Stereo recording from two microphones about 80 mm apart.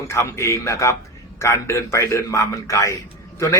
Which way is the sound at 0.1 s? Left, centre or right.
Left.